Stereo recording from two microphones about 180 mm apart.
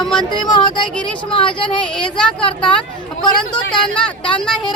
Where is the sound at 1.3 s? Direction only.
30° left (ahead or behind).